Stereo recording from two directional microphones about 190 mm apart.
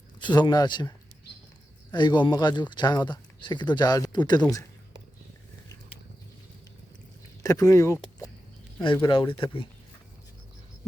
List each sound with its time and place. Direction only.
0.2 s speech: 25° left (ahead or behind)
7.4 s speech: 15° left (ahead or behind)